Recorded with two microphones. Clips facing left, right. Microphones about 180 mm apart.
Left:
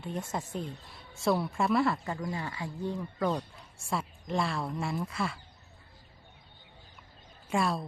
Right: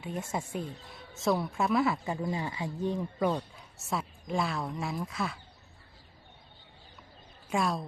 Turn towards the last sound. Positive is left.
turn(degrees=0)  # may be behind; listen again after turning